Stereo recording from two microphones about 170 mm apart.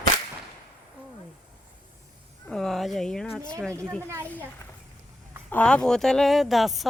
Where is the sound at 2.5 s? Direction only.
5° left (ahead or behind).